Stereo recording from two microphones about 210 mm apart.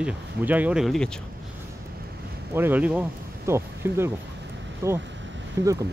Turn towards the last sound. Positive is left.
turn(degrees=-15)  # may be behind; listen again after turning